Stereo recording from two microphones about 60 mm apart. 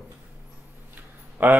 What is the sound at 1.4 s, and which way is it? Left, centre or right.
Speech, right.